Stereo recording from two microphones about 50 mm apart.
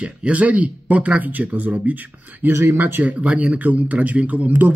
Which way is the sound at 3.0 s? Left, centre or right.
Right.